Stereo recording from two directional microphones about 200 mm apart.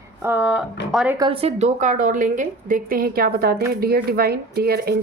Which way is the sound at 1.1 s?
25° right (ahead or behind).